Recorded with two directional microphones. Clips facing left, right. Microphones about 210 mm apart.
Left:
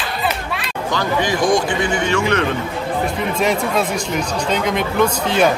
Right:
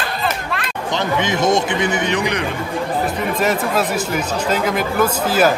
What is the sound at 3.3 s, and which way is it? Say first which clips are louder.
Speech: left 1 dB; 5° right (ahead or behind).